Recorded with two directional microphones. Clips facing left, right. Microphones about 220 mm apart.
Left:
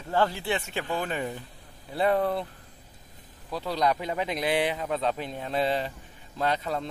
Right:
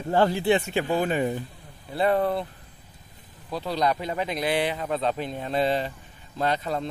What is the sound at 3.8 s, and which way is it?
Speech, 10° left (ahead or behind).